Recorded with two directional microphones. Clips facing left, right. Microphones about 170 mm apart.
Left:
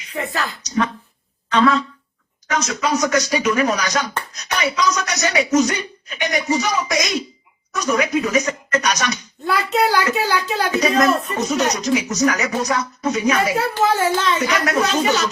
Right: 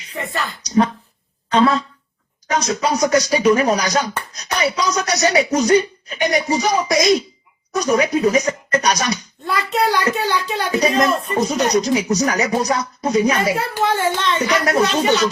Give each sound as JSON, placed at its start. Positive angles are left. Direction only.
{"t": 0.1, "sound": "a child's voice", "side_deg": 0}
{"t": 0.6, "sound": "a sound", "side_deg": -35}
{"t": 1.5, "sound": "speech", "side_deg": -35}
{"t": 9.5, "sound": "a child's voice", "side_deg": 0}
{"t": 10.7, "sound": "speech", "side_deg": -35}
{"t": 13.8, "sound": "a child's voice", "side_deg": 0}
{"t": 14.6, "sound": "speech", "side_deg": -35}